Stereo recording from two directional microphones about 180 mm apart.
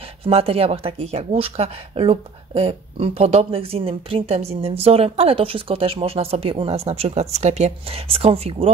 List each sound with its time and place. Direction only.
0.2 s speech: 35° right (ahead or behind)